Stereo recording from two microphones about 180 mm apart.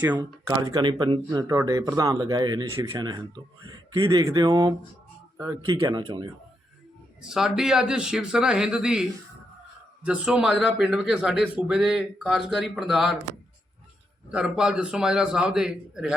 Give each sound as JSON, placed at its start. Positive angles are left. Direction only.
{"t": 0.0, "sound": "speech", "side_deg": -10}
{"t": 0.4, "sound": "speech", "side_deg": -20}
{"t": 7.2, "sound": "a man's voice", "side_deg": -5}
{"t": 14.3, "sound": "a man's voice", "side_deg": -5}